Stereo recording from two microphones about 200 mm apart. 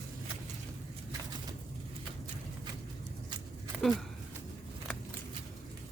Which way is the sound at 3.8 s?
Centre (ahead or behind).